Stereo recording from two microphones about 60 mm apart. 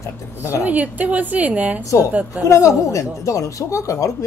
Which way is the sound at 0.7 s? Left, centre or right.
Right.